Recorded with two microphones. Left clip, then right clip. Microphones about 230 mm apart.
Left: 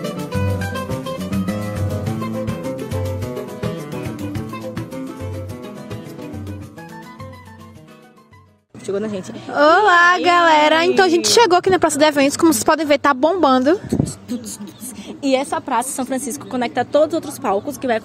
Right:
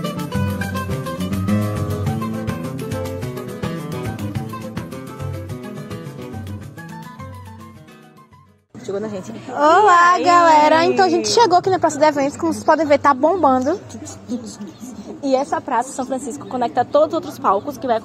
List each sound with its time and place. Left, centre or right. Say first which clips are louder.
0.2 s music: left 1 dB; centre
8.8 s a woman's voice: left 2 dB; left
10.2 s speech: right 1 dB; left
15.2 s a woman's voice: even; left